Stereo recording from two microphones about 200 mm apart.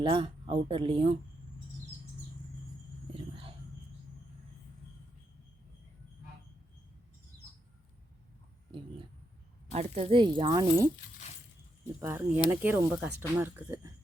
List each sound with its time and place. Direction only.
0.0 s speech: 25° right (ahead or behind)
3.1 s a sound: 25° right (ahead or behind)
9.7 s speech: 30° right (ahead or behind)
11.9 s speech: 10° right (ahead or behind)